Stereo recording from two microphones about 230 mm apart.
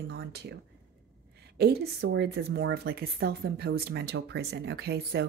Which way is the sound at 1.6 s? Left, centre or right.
Right.